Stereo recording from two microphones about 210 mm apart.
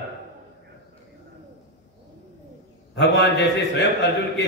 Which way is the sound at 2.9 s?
55° left (ahead or behind).